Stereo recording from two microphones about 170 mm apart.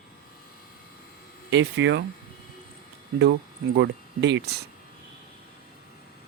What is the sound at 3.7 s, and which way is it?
Speech, 90° right.